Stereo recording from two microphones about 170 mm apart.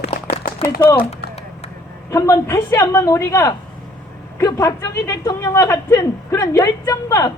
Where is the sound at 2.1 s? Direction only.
15° left (ahead or behind).